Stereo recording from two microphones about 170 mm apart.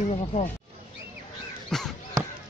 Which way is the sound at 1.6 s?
Centre (ahead or behind).